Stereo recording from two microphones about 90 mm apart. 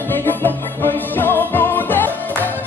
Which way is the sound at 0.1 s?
25° left (ahead or behind).